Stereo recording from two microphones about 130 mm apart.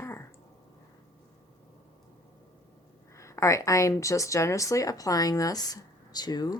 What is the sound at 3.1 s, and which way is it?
Speech, 25° left (ahead or behind).